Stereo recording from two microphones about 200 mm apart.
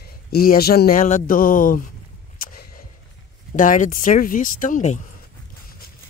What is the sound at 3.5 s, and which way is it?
Speech, 40° left (ahead or behind).